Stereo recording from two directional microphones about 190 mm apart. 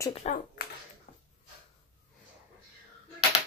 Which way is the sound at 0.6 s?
55° left (ahead or behind).